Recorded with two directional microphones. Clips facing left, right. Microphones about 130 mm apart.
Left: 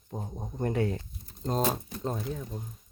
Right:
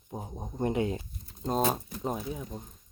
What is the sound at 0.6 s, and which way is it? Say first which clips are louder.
Speech: even; 20° right (ahead or behind).